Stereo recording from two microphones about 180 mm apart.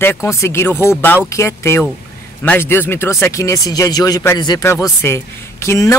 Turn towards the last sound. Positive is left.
turn(degrees=15)  # may be behind; listen again after turning